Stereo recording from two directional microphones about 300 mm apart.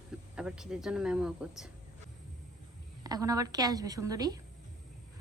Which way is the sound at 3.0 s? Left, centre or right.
Centre.